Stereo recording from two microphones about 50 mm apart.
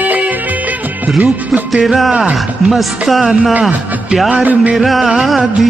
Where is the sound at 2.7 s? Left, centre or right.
Centre.